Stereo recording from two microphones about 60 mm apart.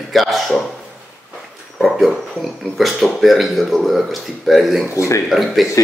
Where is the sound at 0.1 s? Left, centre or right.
Centre.